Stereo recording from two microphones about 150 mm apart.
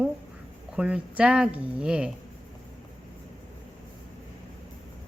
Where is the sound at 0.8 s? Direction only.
10° right (ahead or behind).